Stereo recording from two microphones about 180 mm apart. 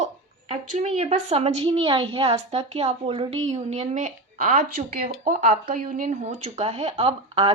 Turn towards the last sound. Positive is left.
turn(degrees=-30)  # may be behind; listen again after turning